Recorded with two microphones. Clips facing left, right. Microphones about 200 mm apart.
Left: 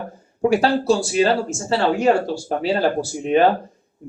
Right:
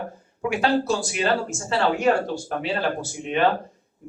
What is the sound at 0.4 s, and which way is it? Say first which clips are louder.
Speech: left 5 dB; 35° left (ahead or behind).